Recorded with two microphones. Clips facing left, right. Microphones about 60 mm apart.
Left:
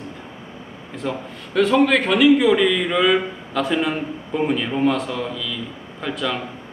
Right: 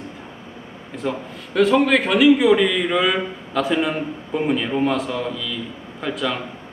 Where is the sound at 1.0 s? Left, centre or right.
Centre.